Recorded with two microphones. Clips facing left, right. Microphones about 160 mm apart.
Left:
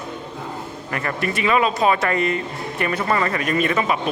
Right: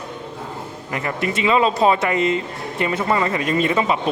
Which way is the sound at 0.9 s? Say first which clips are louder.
Right 1 dB; 20° right (ahead or behind).